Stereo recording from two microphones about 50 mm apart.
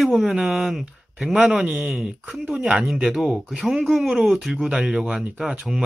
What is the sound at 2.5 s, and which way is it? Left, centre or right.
Speech, right.